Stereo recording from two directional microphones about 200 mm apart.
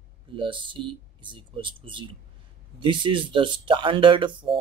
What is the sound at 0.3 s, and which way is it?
Speech, 25° right (ahead or behind).